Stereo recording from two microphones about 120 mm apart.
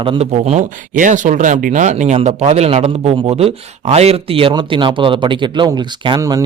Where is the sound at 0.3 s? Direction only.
70° right (ahead or behind).